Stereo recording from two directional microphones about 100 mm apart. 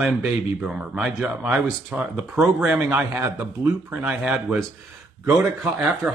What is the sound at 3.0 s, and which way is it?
Speech, 25° right (ahead or behind).